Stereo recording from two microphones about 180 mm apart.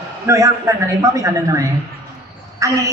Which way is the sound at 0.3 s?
15° right (ahead or behind).